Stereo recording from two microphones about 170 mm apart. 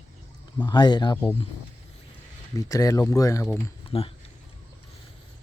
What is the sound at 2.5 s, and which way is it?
Speech, 20° left (ahead or behind).